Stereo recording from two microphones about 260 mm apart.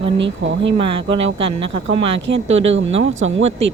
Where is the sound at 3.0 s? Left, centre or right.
Right.